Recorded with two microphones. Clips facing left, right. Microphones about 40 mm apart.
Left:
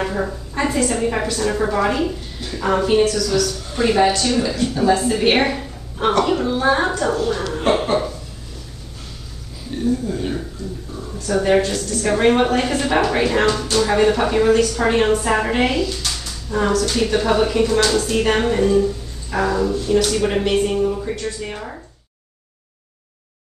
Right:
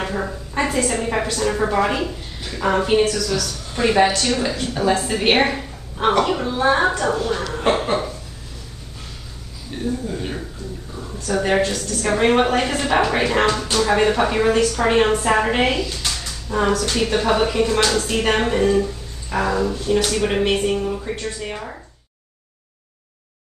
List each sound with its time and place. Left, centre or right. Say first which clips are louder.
0.0 s a woman's voice: left 2 dB; centre
7.8 s a sound: left 2 dB; centre
10.0 s a woman's voice: left 3 dB; centre
16.1 s a sound: even; centre
16.7 s a woman's voice: left 2 dB; right
17.0 s a woman's voice: even; centre